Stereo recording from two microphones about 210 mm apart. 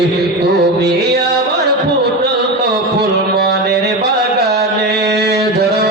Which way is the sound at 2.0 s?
50° right (ahead or behind).